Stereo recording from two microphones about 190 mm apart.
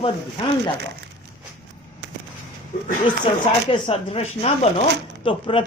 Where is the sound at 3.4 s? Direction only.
30° left (ahead or behind).